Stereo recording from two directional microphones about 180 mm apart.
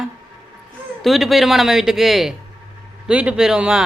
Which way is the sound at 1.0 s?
Centre (ahead or behind).